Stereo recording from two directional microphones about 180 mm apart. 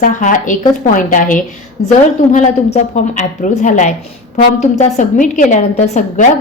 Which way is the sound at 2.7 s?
40° left (ahead or behind).